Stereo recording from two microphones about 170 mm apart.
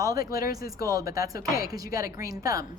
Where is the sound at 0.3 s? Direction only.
60° left (ahead or behind).